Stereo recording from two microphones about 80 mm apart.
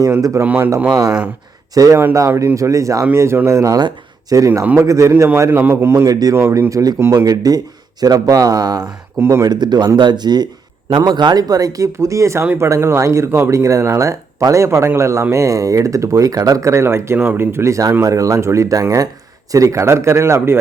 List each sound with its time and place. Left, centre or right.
0.0 s speech: right
0.4 s speech: centre
0.9 s speech: right
3.1 s speech: right
6.1 s speech: right
9.1 s speech: right
9.5 s speech: right